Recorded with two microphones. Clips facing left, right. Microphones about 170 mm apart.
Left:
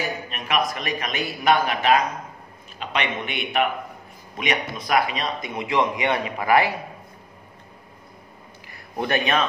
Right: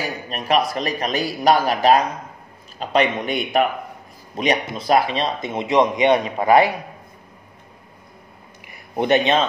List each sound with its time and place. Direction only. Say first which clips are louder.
0.3 s a man's voice: right 7 dB; 35° right (ahead or behind)
8.6 s speech: right 7 dB; 20° right (ahead or behind)